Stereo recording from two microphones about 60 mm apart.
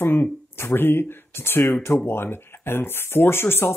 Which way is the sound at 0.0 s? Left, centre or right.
Left.